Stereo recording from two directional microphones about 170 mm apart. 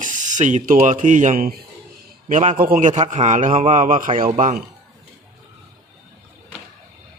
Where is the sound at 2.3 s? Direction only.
45° right (ahead or behind).